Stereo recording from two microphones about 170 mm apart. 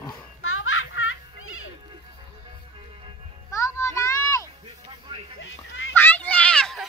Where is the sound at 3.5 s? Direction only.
20° left (ahead or behind).